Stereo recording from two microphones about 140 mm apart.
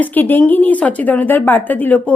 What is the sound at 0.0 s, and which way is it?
A woman's voice, 15° left (ahead or behind).